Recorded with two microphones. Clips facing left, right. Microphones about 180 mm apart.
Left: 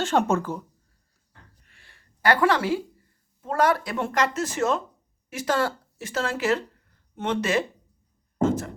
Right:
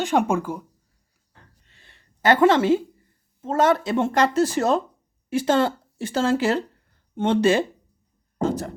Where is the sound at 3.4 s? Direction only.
25° right (ahead or behind).